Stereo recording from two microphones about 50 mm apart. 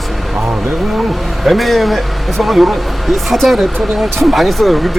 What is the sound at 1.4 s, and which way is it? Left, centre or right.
Speech, centre.